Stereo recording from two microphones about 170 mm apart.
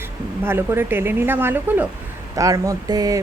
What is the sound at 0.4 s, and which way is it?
Speech, 15° right (ahead or behind).